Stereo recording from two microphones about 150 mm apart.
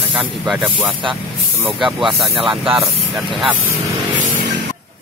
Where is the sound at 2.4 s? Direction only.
35° right (ahead or behind).